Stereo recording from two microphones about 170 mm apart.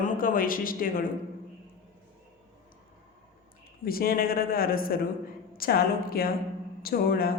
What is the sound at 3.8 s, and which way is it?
A man's voice, 60° left (ahead or behind).